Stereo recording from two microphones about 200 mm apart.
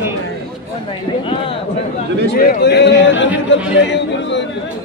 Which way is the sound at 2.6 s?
55° left (ahead or behind).